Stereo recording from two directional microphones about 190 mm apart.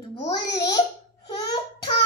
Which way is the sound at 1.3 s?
25° left (ahead or behind).